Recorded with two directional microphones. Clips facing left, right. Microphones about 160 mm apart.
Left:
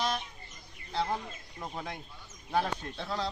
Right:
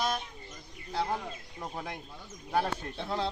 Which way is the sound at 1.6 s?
5° right (ahead or behind).